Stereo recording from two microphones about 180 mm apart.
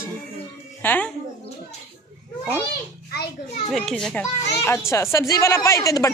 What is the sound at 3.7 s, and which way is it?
A child's voice, centre (ahead or behind).